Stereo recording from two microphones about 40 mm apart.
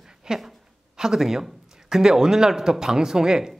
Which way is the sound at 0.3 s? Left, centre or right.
Centre.